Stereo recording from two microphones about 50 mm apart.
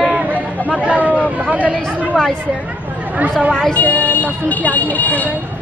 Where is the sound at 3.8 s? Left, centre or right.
Left.